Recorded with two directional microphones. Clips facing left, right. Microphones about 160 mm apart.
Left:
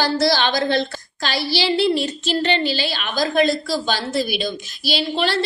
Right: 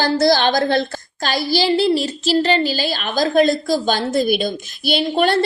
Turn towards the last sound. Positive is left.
turn(degrees=-50)  # may be behind; listen again after turning